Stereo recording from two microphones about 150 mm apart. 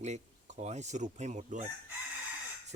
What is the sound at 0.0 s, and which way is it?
Speech, 50° right (ahead or behind).